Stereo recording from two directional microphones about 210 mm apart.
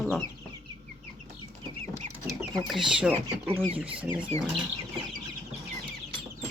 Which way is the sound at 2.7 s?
Centre (ahead or behind).